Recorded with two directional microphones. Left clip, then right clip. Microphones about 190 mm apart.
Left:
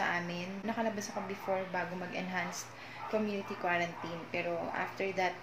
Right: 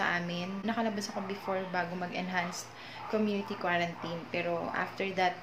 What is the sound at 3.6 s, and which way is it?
A woman's voice, 5° right (ahead or behind).